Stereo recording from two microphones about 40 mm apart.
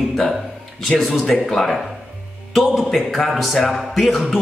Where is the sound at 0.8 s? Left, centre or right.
Centre.